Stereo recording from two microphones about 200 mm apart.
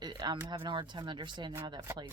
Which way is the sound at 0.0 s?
20° right (ahead or behind).